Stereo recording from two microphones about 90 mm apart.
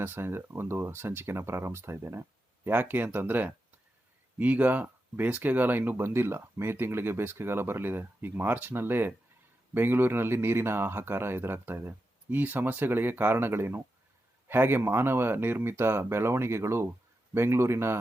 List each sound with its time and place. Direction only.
0.0 s speech: 25° right (ahead or behind)